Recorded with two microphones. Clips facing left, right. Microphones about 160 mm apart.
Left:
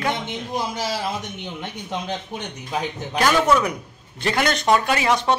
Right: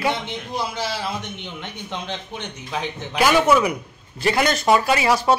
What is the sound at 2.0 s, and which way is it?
Speech, 40° left (ahead or behind).